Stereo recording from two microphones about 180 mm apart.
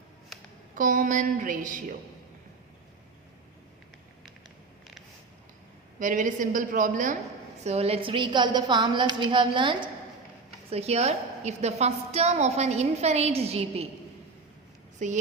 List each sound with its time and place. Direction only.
0.7 s a woman's voice: 45° right (ahead or behind)
6.0 s a woman's voice: 45° right (ahead or behind)
7.6 s a woman's voice: 35° right (ahead or behind)
14.9 s speech: 40° right (ahead or behind)